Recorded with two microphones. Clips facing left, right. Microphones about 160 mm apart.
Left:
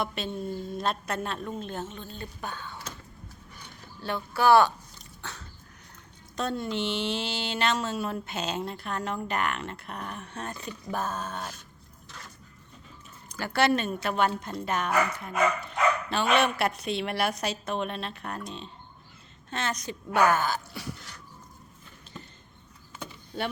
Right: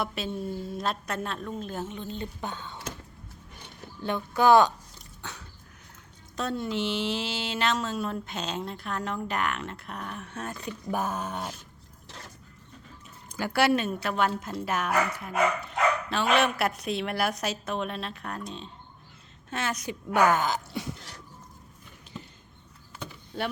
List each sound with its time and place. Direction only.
0.0 s a woman's voice: 5° right (ahead or behind); by 2.9 s 20° right (ahead or behind)
4.0 s a woman's voice: 20° right (ahead or behind)
5.2 s a sound: 15° right (ahead or behind)
6.3 s a woman's voice: centre (ahead or behind)
10.9 s a woman's voice: 15° right (ahead or behind)
13.3 s a woman's voice: 10° right (ahead or behind)
22.1 s a sound: 10° right (ahead or behind)
23.0 s vehicle: centre (ahead or behind)